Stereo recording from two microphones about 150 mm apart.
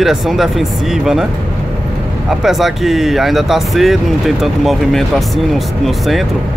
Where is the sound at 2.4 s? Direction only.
Centre (ahead or behind).